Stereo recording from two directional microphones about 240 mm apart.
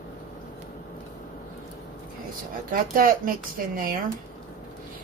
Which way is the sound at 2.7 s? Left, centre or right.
Right.